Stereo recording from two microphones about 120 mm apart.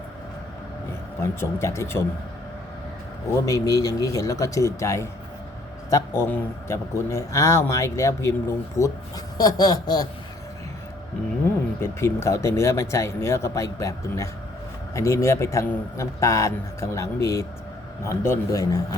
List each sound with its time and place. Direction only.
1.2 s a man's voice: 20° left (ahead or behind)
3.3 s a man's voice: 30° left (ahead or behind)
11.8 s a man's voice: 25° left (ahead or behind)